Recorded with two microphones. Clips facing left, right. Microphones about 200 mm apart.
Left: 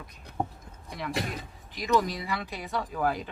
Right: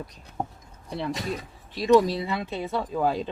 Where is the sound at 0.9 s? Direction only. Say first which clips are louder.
Right 3 dB; 30° right (ahead or behind).